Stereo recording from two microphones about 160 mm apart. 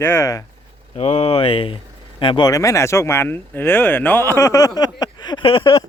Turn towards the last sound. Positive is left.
turn(degrees=35)  # may be behind; listen again after turning